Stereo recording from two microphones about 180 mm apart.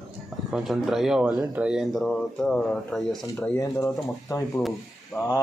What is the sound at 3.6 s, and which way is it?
Speech, 20° left (ahead or behind).